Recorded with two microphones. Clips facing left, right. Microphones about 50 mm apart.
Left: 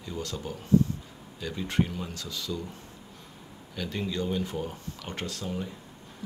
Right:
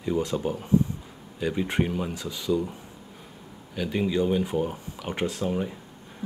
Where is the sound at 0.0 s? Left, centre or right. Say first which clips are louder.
Right 9 dB; right.